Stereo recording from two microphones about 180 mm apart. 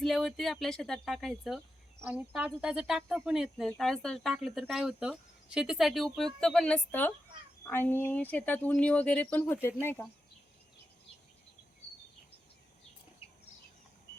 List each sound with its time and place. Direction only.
0.0 s speech: centre (ahead or behind)